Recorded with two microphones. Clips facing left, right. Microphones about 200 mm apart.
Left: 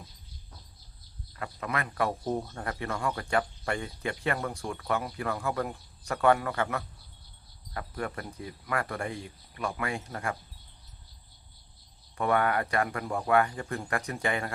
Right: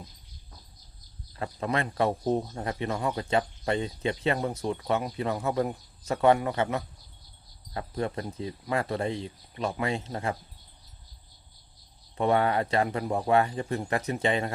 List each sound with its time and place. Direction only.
1.4 s speech: 30° right (ahead or behind)
12.1 s speech: 25° right (ahead or behind)